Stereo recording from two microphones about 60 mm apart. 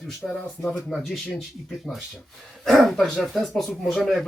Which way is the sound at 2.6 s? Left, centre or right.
Centre.